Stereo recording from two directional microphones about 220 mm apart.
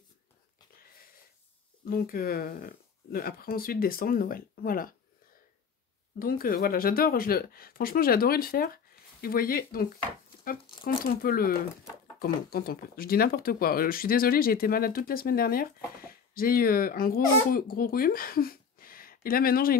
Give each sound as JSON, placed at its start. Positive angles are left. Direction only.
{"t": 1.9, "sound": "speech", "side_deg": 40}
{"t": 6.1, "sound": "speech", "side_deg": 40}
{"t": 10.4, "sound": "a sound", "side_deg": 40}
{"t": 11.1, "sound": "speech", "side_deg": 40}